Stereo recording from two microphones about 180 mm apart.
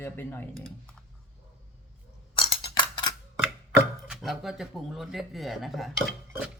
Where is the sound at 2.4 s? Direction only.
25° left (ahead or behind).